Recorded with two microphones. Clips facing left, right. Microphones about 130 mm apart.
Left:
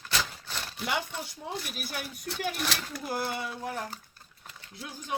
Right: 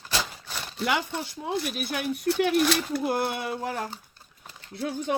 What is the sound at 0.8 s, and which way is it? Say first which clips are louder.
Speech: right 5 dB; 75° right (ahead or behind).